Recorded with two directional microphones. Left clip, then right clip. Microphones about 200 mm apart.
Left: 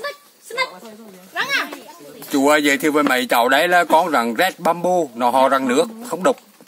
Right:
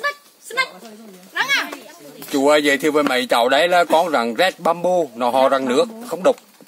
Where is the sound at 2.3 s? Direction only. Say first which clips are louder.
Even; 10° left (ahead or behind).